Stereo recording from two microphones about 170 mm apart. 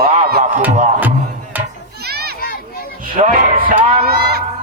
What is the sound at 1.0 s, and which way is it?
Music, 10° right (ahead or behind).